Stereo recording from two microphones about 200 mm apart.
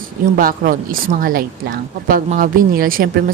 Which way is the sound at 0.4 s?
45° right (ahead or behind).